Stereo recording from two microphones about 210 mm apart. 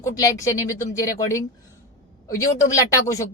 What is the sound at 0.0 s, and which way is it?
Speech, 15° left (ahead or behind).